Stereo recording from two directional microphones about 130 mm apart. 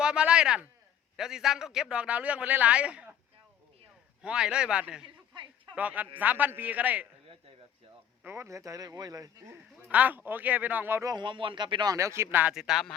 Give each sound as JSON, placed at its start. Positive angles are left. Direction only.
{"t": 0.0, "sound": "a man's voice", "side_deg": -5}
{"t": 4.2, "sound": "a man's voice", "side_deg": -5}
{"t": 8.2, "sound": "speech", "side_deg": -20}
{"t": 9.9, "sound": "a man's voice", "side_deg": -10}
{"t": 11.1, "sound": "speech", "side_deg": -35}
{"t": 11.9, "sound": "speech", "side_deg": -20}
{"t": 12.5, "sound": "speech", "side_deg": -5}